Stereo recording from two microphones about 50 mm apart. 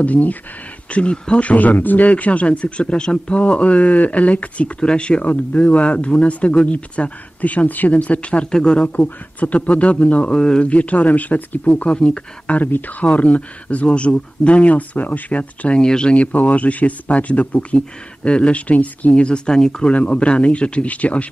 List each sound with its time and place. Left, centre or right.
0.0 s speech: left
1.4 s speech: left
11.7 s speech: left
12.5 s speech: left
15.8 s speech: centre